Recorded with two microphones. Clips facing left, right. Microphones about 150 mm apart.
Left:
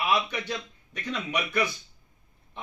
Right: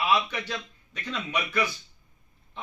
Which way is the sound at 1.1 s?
15° left (ahead or behind).